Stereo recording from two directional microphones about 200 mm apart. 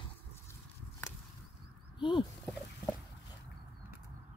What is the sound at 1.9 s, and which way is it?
Speech, 25° left (ahead or behind).